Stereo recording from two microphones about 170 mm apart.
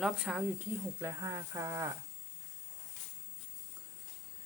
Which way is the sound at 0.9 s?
20° right (ahead or behind).